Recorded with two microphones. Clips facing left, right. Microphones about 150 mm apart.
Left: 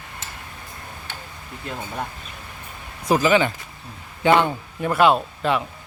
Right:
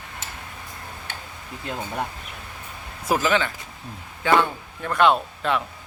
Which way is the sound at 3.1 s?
Centre (ahead or behind).